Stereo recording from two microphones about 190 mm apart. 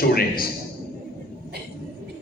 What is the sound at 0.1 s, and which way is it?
Speech, 50° left (ahead or behind).